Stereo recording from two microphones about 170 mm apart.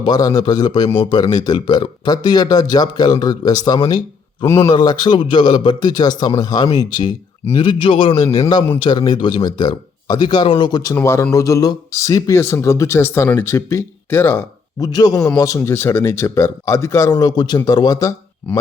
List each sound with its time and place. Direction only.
0.0 s speech: 25° left (ahead or behind)